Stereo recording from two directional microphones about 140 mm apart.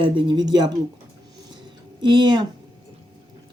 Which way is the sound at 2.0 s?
35° right (ahead or behind).